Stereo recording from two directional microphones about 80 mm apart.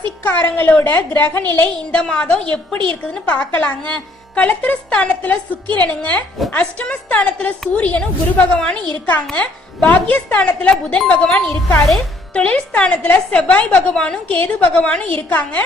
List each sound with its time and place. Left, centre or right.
0.3 s a woman's voice: left